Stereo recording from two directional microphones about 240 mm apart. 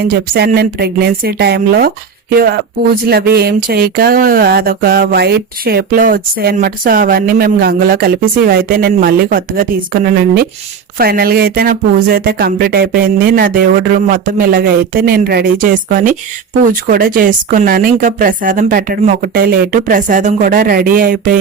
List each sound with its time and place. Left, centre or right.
0.0 s speech: right